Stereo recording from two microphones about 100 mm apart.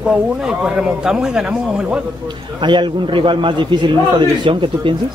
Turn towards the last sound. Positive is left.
turn(degrees=-60)  # may be behind; listen again after turning